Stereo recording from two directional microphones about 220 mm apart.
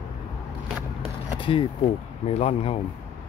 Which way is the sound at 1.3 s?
20° left (ahead or behind).